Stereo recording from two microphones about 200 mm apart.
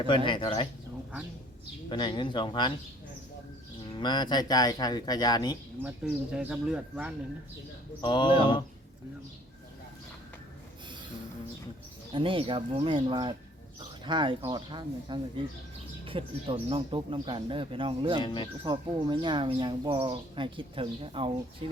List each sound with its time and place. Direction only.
0.3 s speech: 25° left (ahead or behind)
1.9 s speech: 25° left (ahead or behind)
3.9 s speech: 20° left (ahead or behind)
5.8 s speech: 5° right (ahead or behind)
8.0 s speech: 25° left (ahead or behind)
12.1 s speech: 25° right (ahead or behind)
18.2 s speech: 20° left (ahead or behind)
18.6 s speech: 20° right (ahead or behind)